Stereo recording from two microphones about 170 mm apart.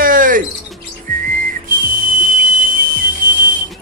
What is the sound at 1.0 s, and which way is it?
Whistling, 55° right (ahead or behind).